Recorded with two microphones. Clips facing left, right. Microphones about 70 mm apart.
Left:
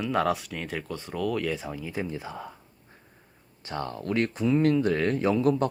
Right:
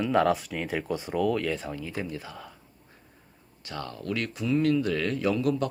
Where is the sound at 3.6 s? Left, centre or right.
Left.